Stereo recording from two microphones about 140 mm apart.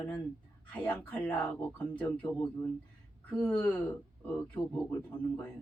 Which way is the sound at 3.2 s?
10° left (ahead or behind).